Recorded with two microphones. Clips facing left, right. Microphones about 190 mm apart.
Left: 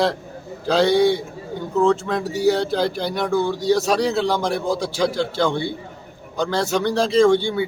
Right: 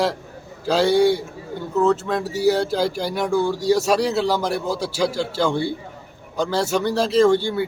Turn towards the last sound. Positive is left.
turn(degrees=-5)  # may be behind; listen again after turning